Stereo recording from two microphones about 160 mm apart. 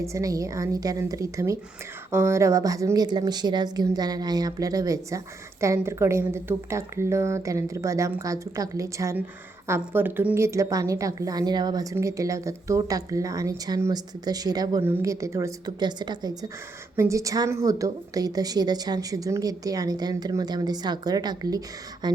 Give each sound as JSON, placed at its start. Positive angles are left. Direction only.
{"t": 0.0, "sound": "a woman's voice", "side_deg": -20}